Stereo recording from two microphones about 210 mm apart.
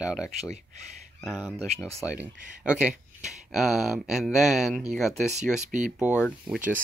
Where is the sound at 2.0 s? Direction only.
5° right (ahead or behind).